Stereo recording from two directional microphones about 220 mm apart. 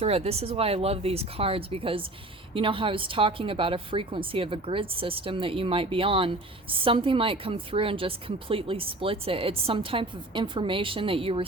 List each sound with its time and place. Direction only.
0.0 s a woman's voice: 25° right (ahead or behind)